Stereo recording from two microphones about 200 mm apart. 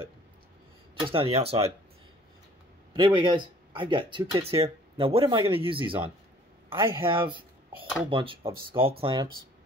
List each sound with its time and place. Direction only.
1.0 s speech: 30° right (ahead or behind)
2.9 s speech: 25° right (ahead or behind)
6.7 s a man's voice: 10° right (ahead or behind)
7.2 s a sound: 25° right (ahead or behind)
8.1 s speech: 25° right (ahead or behind)